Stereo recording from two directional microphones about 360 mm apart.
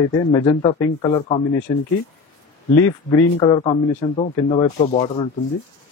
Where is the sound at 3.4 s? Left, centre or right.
Centre.